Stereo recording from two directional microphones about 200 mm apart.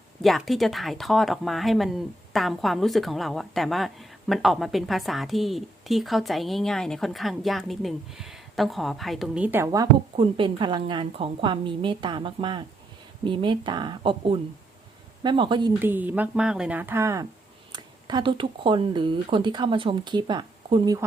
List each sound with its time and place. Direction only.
0.2 s speech: centre (ahead or behind); by 15.7 s 25° right (ahead or behind)
15.8 s speech: 10° right (ahead or behind)